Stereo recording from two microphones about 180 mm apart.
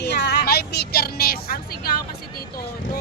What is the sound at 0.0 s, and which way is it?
Vehicle, 70° left (ahead or behind).